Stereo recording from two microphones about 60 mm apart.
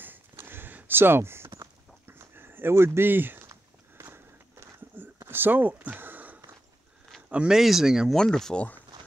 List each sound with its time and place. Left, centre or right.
0.4 s a sound: right
2.7 s speech: right
4.9 s a sound: right
7.2 s speech: right
7.5 s speech: centre
8.1 s speech: centre
8.5 s speech: left